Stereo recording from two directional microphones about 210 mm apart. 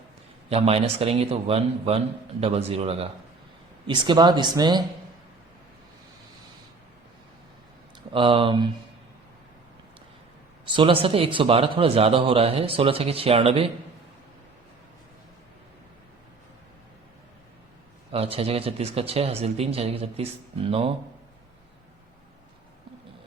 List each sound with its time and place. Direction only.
0.5 s speech: 30° right (ahead or behind)
8.1 s speech: 25° right (ahead or behind)
10.7 s speech: 25° right (ahead or behind)
18.1 s speech: 30° right (ahead or behind)